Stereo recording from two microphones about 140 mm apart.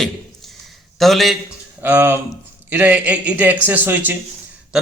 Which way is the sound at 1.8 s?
15° right (ahead or behind).